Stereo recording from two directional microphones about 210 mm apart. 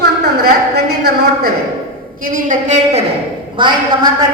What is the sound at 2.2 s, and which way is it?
Speech, 40° right (ahead or behind).